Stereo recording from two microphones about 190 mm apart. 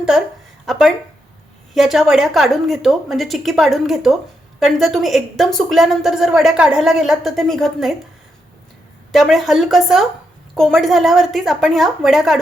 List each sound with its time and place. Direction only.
0.6 s a woman's voice: centre (ahead or behind)
9.1 s a woman's voice: centre (ahead or behind)